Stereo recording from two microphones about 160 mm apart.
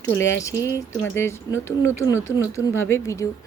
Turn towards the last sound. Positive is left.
turn(degrees=20)  # may be behind; listen again after turning